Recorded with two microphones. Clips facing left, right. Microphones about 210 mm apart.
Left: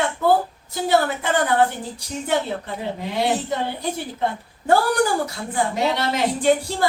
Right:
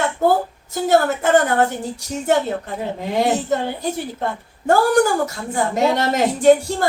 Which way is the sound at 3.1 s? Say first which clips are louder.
Right 4 dB; 45° right (ahead or behind).